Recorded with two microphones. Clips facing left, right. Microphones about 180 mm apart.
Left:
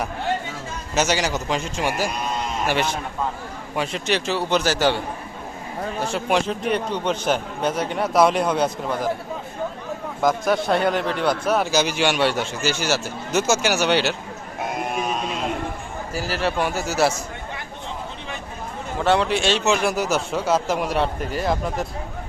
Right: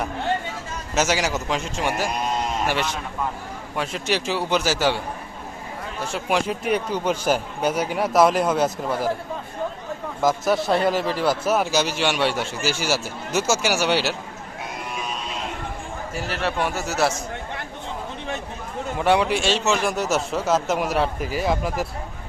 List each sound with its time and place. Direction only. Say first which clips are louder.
0.9 s speech: even; 5° right (ahead or behind)
3.8 s speech: left 1 dB; 5° right (ahead or behind)
6.1 s speech: even; 5° right (ahead or behind)
10.2 s speech: even; centre (ahead or behind)
14.6 s a sound: left 7 dB; 50° left (ahead or behind)
16.1 s speech: left 2 dB; centre (ahead or behind)
18.9 s speech: even; 10° right (ahead or behind)